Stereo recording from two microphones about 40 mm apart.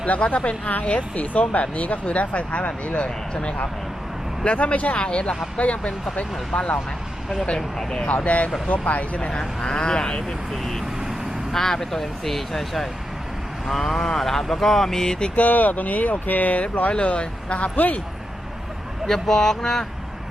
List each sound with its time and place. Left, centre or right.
0.1 s speech: left
4.5 s speech: left
7.8 s speech: centre
8.0 s speech: left
9.4 s speech: centre
15.4 s speech: left
16.9 s speech: left
17.7 s speech: left
19.0 s speech: centre